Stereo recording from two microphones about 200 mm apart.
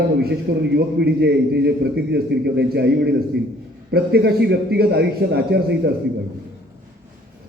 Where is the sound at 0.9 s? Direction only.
55° right (ahead or behind).